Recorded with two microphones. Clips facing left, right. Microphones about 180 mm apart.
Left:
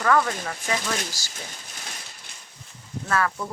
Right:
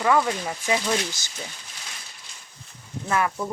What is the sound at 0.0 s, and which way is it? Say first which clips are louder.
Speech: right 1 dB; 15° right (ahead or behind).